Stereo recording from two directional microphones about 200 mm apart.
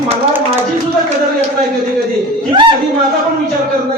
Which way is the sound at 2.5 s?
25° right (ahead or behind).